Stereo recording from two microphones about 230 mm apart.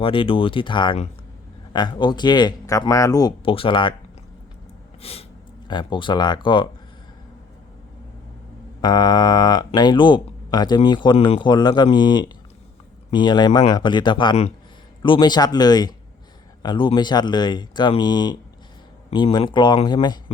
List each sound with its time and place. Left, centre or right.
0.0 s speech: left
5.0 s speech: left
8.8 s speech: centre